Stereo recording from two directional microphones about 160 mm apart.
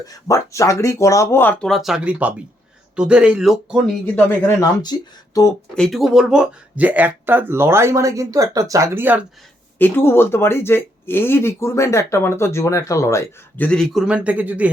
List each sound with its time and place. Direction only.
0.0 s speech: 20° left (ahead or behind)
4.8 s speech: 25° left (ahead or behind)
5.7 s speech: centre (ahead or behind)
9.7 s speech: 10° left (ahead or behind)
13.7 s speech: centre (ahead or behind)